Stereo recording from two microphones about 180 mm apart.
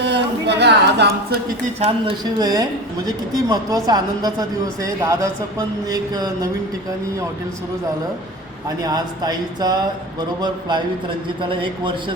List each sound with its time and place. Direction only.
0.0 s speech: 75° right (ahead or behind)
2.4 s speech: 20° right (ahead or behind)
8.6 s speech: 20° right (ahead or behind)